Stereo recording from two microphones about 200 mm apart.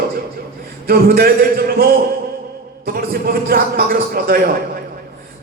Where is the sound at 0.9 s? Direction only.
50° right (ahead or behind).